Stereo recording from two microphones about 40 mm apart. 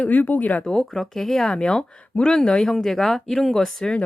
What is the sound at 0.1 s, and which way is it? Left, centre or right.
Speech, left.